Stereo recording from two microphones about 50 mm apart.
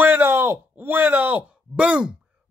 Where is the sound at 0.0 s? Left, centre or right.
Right.